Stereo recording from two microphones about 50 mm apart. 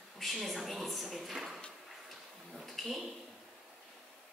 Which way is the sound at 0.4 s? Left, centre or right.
Centre.